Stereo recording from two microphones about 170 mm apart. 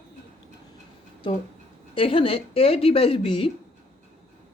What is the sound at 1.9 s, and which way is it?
A man's voice, 30° left (ahead or behind).